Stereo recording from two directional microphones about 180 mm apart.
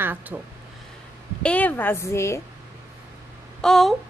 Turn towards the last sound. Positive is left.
turn(degrees=0)  # may be behind; listen again after turning